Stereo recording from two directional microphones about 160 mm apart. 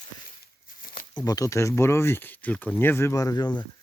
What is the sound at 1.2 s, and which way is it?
Speech, 20° left (ahead or behind).